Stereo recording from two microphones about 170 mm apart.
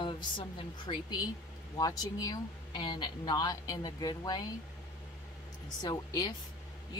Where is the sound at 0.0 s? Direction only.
30° left (ahead or behind).